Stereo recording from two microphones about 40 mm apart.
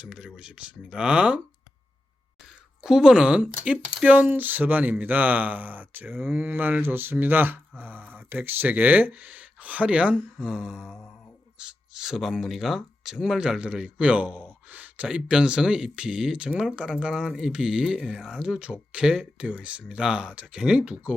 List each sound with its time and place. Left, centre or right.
0.0 s speech: right
2.8 s speech: centre
3.3 s speech: right
4.2 s speech: right
10.4 s speech: right
11.6 s a sound: right
11.9 s speech: centre
13.6 s speech: right
15.0 s speech: right
20.0 s speech: right